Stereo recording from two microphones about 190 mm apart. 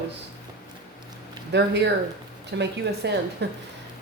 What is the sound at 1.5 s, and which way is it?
A woman's voice, 65° right (ahead or behind).